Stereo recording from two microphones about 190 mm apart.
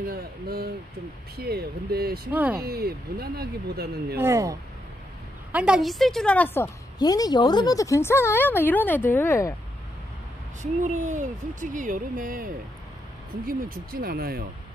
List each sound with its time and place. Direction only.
0.0 s speech: 55° right (ahead or behind)
2.3 s speech: 10° right (ahead or behind)
2.6 s speech: 55° right (ahead or behind)
4.2 s a woman's voice: 15° right (ahead or behind); by 6.7 s 10° left (ahead or behind)
7.0 s speech: 20° left (ahead or behind)
10.6 s speech: 40° right (ahead or behind)